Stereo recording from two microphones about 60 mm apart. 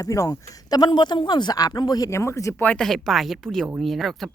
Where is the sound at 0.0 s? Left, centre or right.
Left.